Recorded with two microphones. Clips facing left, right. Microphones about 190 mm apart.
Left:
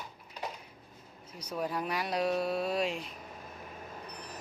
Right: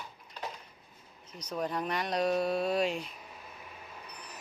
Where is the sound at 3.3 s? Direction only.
45° left (ahead or behind).